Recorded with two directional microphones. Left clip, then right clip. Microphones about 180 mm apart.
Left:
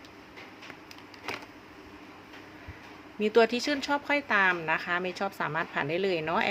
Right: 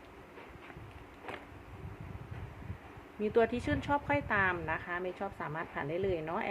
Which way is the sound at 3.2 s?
20° left (ahead or behind).